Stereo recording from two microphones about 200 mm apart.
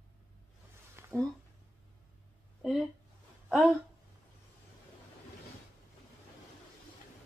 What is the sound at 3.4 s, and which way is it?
Speech, centre (ahead or behind).